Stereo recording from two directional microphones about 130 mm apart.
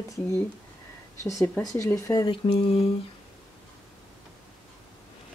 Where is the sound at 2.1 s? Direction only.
35° left (ahead or behind).